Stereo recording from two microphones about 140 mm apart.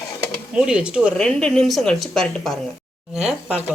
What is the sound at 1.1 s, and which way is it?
A woman's voice, 5° left (ahead or behind).